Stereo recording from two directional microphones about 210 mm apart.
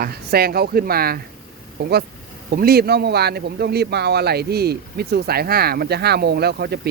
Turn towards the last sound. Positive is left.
turn(degrees=-50)  # may be behind; listen again after turning